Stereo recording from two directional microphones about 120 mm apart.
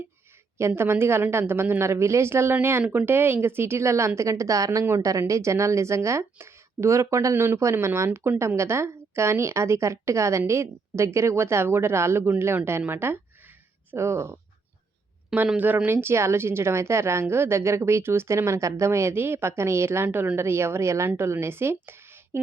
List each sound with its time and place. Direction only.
0.8 s speech: 20° right (ahead or behind)
15.3 s speech: 10° right (ahead or behind)